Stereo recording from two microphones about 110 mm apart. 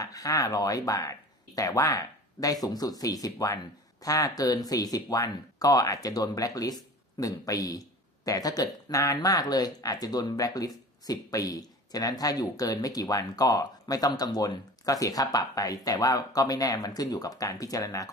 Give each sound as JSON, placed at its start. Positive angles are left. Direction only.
{"t": 0.0, "sound": "speech", "side_deg": 35}